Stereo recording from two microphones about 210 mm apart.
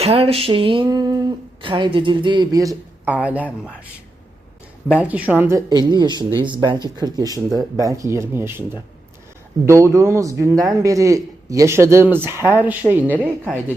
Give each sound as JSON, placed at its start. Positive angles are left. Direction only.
{"t": 0.0, "sound": "speech", "side_deg": -30}
{"t": 4.9, "sound": "speech", "side_deg": -5}
{"t": 12.4, "sound": "speech", "side_deg": 10}
{"t": 12.6, "sound": "speech", "side_deg": -10}